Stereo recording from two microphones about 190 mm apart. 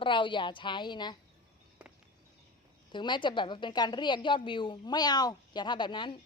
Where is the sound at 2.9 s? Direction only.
25° left (ahead or behind).